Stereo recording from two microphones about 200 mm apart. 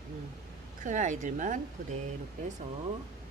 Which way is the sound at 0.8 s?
40° right (ahead or behind).